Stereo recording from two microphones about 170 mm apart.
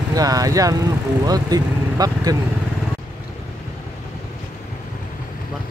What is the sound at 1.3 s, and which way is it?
Vehicle, 20° right (ahead or behind).